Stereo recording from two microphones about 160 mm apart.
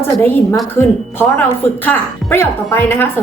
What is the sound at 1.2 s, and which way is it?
A woman's voice, 15° left (ahead or behind).